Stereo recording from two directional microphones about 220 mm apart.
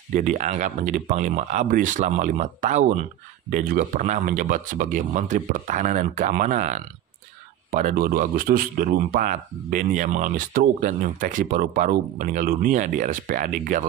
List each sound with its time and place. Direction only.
0.1 s speech: 35° right (ahead or behind)